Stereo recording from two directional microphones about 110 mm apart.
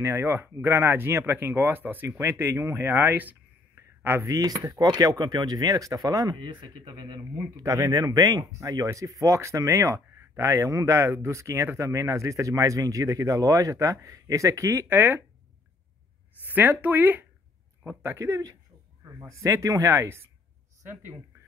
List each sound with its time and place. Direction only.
0.0 s speech: 25° right (ahead or behind)
4.3 s speech: 35° right (ahead or behind)
16.4 s speech: 15° right (ahead or behind)